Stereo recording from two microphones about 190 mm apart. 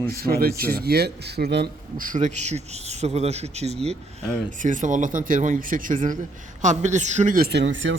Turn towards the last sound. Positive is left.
turn(degrees=-70)  # may be behind; listen again after turning